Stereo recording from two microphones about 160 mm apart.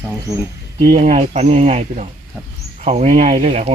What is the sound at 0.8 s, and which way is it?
Speech, 55° right (ahead or behind).